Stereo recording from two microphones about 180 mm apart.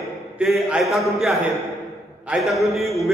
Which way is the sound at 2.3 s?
Centre (ahead or behind).